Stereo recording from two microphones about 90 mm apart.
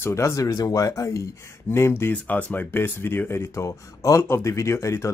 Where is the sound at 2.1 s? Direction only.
20° left (ahead or behind).